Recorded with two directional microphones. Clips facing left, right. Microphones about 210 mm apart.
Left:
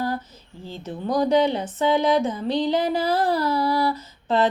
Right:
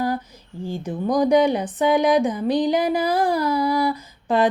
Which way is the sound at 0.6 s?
15° right (ahead or behind).